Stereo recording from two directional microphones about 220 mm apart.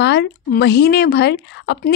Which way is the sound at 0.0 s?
50° left (ahead or behind).